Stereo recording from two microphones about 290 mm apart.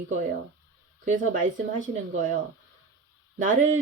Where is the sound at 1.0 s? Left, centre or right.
Right.